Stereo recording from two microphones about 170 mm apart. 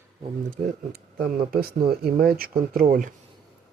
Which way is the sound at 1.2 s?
60° right (ahead or behind).